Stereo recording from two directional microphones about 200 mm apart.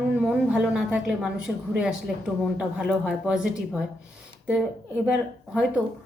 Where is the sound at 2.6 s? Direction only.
5° right (ahead or behind).